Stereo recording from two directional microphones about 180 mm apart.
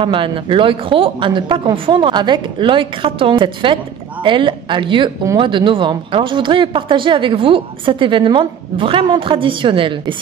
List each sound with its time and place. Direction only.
0.0 s a woman's voice: 30° right (ahead or behind)